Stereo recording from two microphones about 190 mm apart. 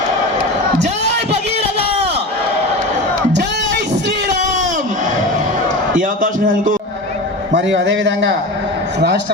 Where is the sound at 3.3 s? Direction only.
65° right (ahead or behind).